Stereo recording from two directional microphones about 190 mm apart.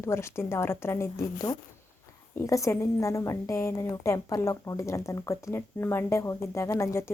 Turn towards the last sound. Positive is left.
turn(degrees=15)  # may be behind; listen again after turning